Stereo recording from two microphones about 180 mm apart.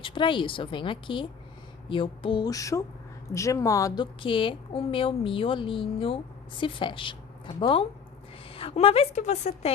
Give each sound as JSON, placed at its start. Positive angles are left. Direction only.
{"t": 0.0, "sound": "a woman's voice", "side_deg": 25}